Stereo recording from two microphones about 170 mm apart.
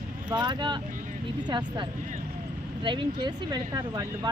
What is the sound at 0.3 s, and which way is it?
Speech, 25° right (ahead or behind).